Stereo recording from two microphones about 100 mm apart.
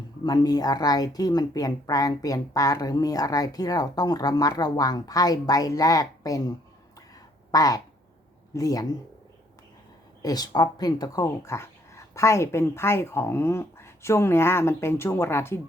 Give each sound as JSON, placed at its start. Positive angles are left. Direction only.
{"t": 0.3, "sound": "speech", "side_deg": 40}
{"t": 7.5, "sound": "speech", "side_deg": 35}
{"t": 10.2, "sound": "speech", "side_deg": 40}